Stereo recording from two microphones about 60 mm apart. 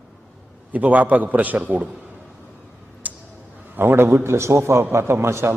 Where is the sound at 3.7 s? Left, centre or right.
Right.